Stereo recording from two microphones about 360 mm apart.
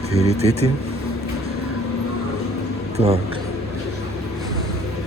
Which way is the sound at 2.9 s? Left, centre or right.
Centre.